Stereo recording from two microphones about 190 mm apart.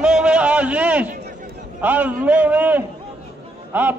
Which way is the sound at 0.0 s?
5° right (ahead or behind).